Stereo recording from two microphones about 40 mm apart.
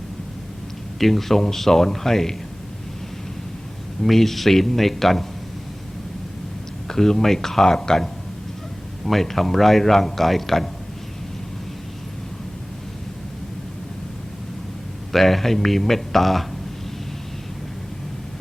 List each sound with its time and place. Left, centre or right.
0.9 s speech: centre
4.0 s a man's voice: centre
6.8 s a man's voice: centre
15.1 s a man's voice: centre